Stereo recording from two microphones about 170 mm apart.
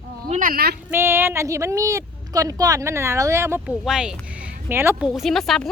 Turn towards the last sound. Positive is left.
turn(degrees=0)  # may be behind; listen again after turning